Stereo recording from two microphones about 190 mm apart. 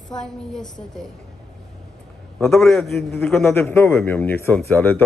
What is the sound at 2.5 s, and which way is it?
A woman's voice, centre (ahead or behind).